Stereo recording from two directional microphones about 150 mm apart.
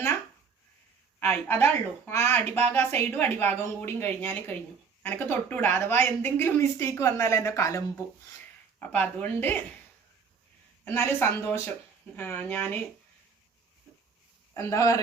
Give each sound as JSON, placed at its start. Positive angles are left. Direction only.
{"t": 1.3, "sound": "a woman's voice", "side_deg": 15}
{"t": 10.8, "sound": "a woman's voice", "side_deg": 15}
{"t": 14.5, "sound": "speech", "side_deg": 20}